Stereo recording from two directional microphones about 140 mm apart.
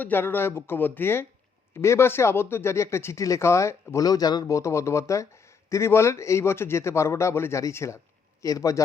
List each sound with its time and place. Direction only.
0.0 s speech: 15° left (ahead or behind)